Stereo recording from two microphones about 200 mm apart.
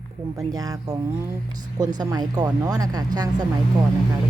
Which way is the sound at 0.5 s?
15° right (ahead or behind).